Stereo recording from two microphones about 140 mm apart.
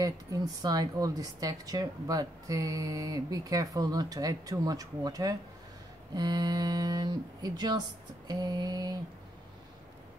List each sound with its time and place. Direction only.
0.0 s a woman's voice: 25° right (ahead or behind)